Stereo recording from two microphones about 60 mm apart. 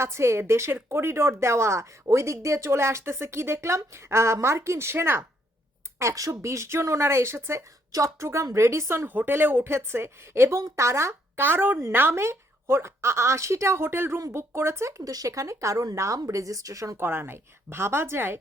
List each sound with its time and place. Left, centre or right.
0.0 s speech: right
6.0 s speech: right
7.9 s speech: right
9.0 s speech: right
11.3 s speech: right
12.2 s speech: right
17.0 s speech: right